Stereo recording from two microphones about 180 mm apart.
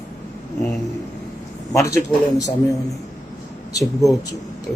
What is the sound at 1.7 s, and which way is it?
Speech, 15° left (ahead or behind).